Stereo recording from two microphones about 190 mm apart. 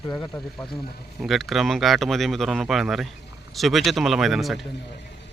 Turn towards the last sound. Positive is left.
turn(degrees=0)  # may be behind; listen again after turning